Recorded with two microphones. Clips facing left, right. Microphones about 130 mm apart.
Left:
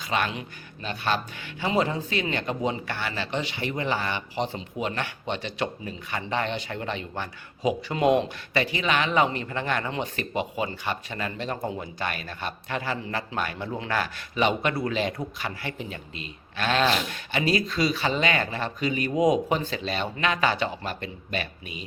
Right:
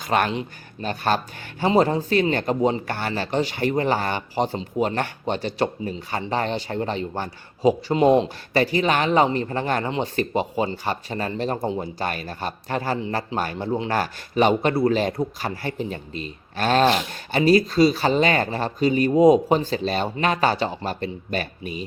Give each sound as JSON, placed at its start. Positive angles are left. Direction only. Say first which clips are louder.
{"t": 0.0, "sound": "speech", "louder": "right 6 dB", "side_deg": -50}